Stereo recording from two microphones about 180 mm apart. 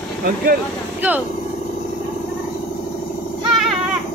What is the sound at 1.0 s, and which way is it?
Speech, 10° right (ahead or behind).